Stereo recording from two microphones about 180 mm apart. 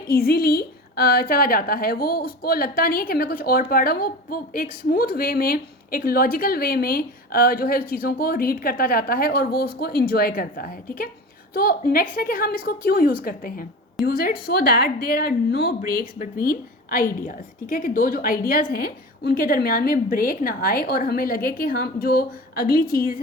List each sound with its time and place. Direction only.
0.1 s a woman's voice: 55° left (ahead or behind)
16.1 s a woman's voice: 45° left (ahead or behind)